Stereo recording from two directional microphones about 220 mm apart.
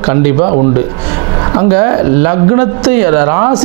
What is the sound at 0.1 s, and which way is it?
Speech, 25° right (ahead or behind).